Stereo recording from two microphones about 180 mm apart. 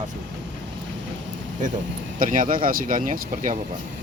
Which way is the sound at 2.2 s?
50° right (ahead or behind).